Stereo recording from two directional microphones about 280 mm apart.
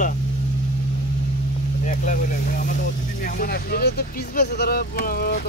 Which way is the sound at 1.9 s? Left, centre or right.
Left.